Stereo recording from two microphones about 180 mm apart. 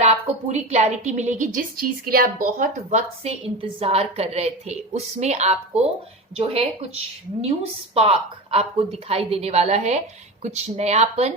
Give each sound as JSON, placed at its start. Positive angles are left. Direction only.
{"t": 0.0, "sound": "a woman's voice", "side_deg": -40}